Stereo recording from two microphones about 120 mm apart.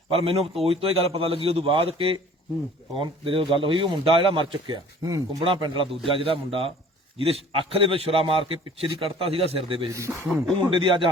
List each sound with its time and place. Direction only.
0.1 s a man's voice: 55° right (ahead or behind)
9.9 s a man's voice: 25° right (ahead or behind)
10.7 s a man's voice: 45° right (ahead or behind)